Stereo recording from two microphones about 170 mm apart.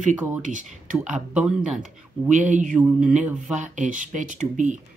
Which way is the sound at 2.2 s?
45° right (ahead or behind).